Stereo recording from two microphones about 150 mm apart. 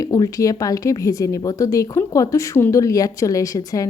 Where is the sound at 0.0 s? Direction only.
25° left (ahead or behind).